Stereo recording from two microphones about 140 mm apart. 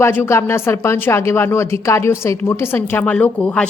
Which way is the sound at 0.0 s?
15° left (ahead or behind).